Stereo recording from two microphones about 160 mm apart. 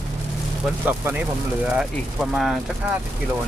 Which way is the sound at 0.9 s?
10° right (ahead or behind).